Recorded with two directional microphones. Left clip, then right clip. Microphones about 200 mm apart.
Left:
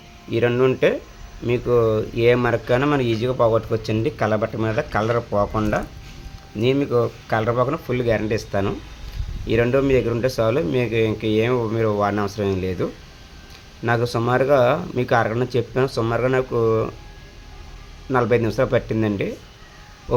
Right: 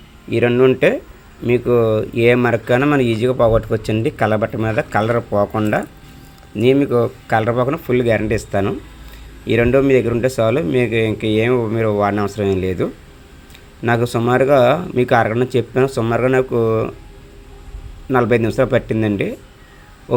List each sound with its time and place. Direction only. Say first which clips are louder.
0.3 s a man's voice: right 5 dB; 20° right (ahead or behind)
18.1 s speech: right 3 dB; 20° right (ahead or behind)